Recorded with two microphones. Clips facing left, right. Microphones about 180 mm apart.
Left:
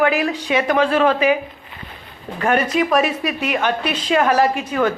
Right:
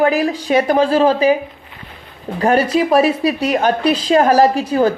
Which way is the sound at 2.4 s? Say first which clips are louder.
Right 4 dB; 35° right (ahead or behind).